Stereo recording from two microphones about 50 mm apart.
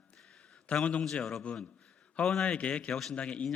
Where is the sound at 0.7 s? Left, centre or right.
Left.